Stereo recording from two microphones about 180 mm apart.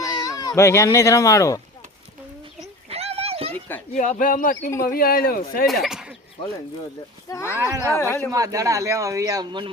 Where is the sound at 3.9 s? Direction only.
45° left (ahead or behind).